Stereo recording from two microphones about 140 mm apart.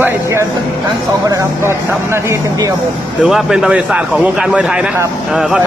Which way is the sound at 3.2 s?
5° right (ahead or behind).